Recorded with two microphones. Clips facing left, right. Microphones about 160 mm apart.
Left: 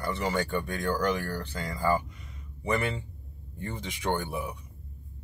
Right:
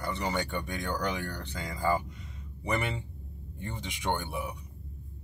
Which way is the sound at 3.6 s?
15° right (ahead or behind).